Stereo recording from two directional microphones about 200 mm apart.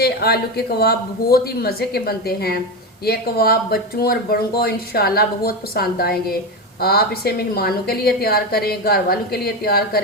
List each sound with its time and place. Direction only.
0.0 s a woman's voice: 50° left (ahead or behind)